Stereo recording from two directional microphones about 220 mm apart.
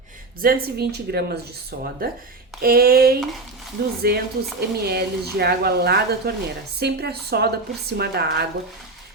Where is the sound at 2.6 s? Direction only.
45° right (ahead or behind).